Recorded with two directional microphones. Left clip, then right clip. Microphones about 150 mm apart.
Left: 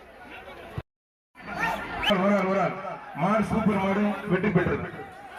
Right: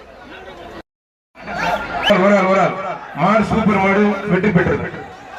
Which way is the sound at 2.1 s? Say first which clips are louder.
Right 11 dB; 20° left (ahead or behind).